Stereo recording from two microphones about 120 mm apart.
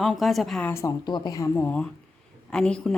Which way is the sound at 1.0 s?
40° left (ahead or behind).